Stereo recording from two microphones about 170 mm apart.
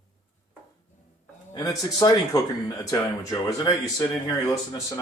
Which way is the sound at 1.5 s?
20° left (ahead or behind).